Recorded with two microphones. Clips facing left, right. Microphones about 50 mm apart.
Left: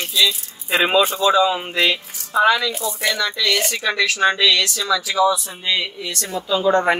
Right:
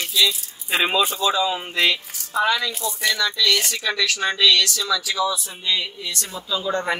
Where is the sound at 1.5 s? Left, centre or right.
Left.